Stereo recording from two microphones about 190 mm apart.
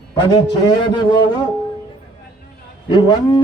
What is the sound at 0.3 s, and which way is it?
A man's voice, 25° left (ahead or behind).